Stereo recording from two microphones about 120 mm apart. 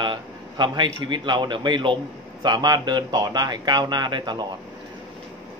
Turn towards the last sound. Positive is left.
turn(degrees=-35)  # may be behind; listen again after turning